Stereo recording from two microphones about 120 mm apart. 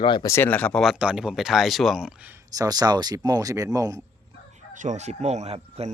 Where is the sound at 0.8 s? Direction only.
10° right (ahead or behind).